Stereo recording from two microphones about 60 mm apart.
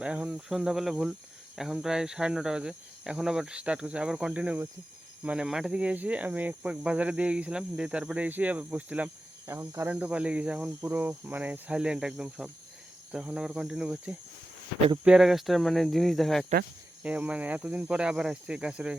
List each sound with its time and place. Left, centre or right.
0.0 s cricket: centre
0.4 s speech: centre
5.5 s speech: centre; by 6.7 s right
6.7 s speech: centre
9.5 s speech: right
9.9 s speech: right
10.8 s speech: right
11.7 s speech: centre
15.0 s speech: centre
17.0 s speech: right